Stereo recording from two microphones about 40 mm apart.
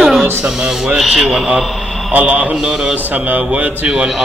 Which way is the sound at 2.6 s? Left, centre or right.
Right.